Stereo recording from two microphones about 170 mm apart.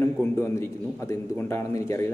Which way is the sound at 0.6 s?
15° left (ahead or behind).